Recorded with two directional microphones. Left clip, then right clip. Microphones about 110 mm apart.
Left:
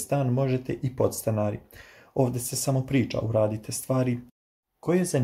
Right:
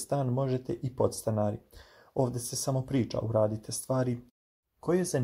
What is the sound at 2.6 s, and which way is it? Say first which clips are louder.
Speech: left 5 dB; 35° right (ahead or behind).